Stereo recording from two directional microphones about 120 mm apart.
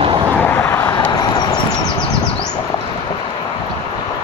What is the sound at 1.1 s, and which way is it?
Vehicle, 35° left (ahead or behind).